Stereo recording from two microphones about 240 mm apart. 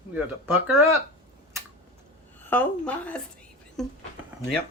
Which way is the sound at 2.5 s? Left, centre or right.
Centre.